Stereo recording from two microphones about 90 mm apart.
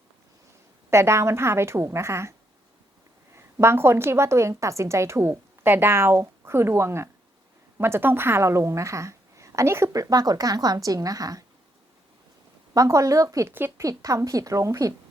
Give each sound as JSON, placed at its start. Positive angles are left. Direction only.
{"t": 0.9, "sound": "a woman's voice", "side_deg": -30}
{"t": 3.3, "sound": "a woman's voice", "side_deg": -30}
{"t": 12.7, "sound": "a woman's voice", "side_deg": -40}
{"t": 13.5, "sound": "a woman's voice", "side_deg": -25}
{"t": 13.8, "sound": "a woman's voice", "side_deg": -40}